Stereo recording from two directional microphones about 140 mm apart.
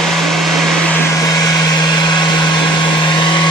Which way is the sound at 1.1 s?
25° left (ahead or behind).